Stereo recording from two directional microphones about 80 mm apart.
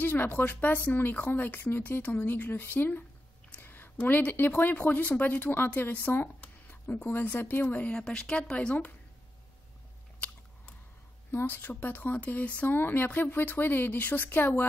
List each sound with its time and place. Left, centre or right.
0.0 s speech: left
10.2 s biting: centre
11.3 s speech: left